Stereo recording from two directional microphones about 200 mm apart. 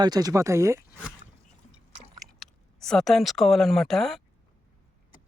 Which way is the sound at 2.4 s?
Centre (ahead or behind).